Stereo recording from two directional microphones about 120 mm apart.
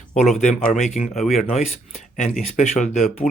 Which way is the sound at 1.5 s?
65° left (ahead or behind).